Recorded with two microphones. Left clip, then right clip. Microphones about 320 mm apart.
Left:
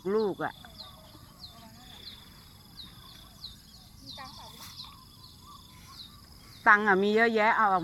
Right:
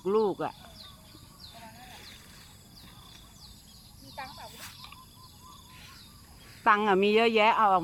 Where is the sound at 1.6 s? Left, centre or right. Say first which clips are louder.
Right 3 dB; right.